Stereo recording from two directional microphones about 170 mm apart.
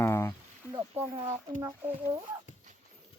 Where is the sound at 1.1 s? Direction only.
20° right (ahead or behind).